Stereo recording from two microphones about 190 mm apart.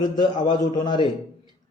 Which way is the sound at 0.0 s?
25° left (ahead or behind).